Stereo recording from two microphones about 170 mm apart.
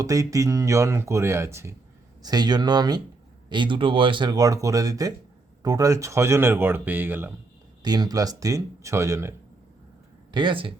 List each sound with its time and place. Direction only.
0.0 s speech: 20° right (ahead or behind)
7.8 s speech: 25° right (ahead or behind)
10.3 s speech: 30° right (ahead or behind)